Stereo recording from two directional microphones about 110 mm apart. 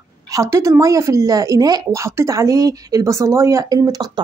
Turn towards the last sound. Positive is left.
turn(degrees=-35)  # may be behind; listen again after turning